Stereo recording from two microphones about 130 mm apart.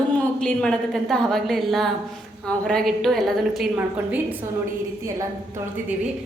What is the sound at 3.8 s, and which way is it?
Speech, 15° right (ahead or behind).